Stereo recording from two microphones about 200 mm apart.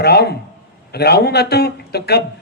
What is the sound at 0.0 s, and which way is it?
Speech, 55° left (ahead or behind).